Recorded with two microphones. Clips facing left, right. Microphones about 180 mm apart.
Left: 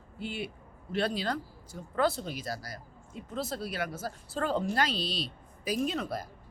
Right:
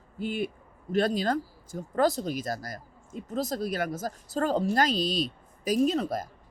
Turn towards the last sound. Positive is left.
turn(degrees=-40)  # may be behind; listen again after turning